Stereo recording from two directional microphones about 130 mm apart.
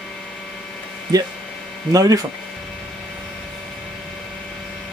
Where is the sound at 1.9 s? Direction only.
25° right (ahead or behind).